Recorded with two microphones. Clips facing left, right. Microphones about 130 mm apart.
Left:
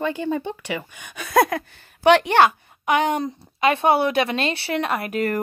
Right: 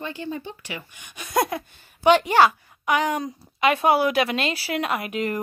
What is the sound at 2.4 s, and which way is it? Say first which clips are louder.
A woman's voice: left 1 dB; 25° left (ahead or behind).